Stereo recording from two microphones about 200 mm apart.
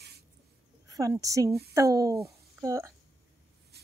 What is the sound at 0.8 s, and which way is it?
A woman's voice, 15° right (ahead or behind).